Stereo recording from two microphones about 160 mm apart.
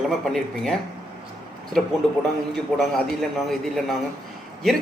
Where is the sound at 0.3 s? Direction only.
Centre (ahead or behind).